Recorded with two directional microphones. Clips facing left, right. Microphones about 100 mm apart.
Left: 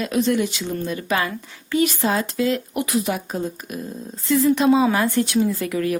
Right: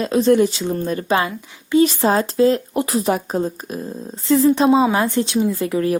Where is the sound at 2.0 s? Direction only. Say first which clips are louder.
Right 6 dB; 35° right (ahead or behind).